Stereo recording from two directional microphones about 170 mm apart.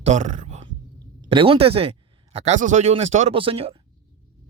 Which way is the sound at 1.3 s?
30° right (ahead or behind).